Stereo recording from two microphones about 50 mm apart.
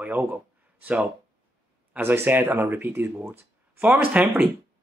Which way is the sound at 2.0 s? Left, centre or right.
Right.